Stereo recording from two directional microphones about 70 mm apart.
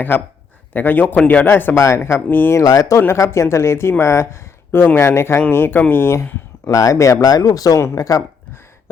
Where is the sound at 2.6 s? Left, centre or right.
Left.